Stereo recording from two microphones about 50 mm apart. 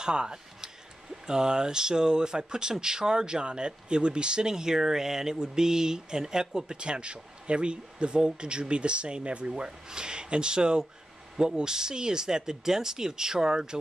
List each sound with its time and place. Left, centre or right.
0.0 s speech: centre